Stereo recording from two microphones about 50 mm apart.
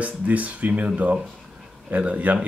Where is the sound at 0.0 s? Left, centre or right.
Right.